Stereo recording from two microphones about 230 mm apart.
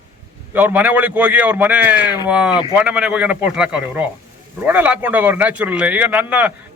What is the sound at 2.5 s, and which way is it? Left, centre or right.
Speech, centre.